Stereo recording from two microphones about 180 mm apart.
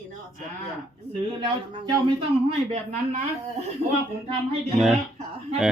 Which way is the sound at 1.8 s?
30° right (ahead or behind).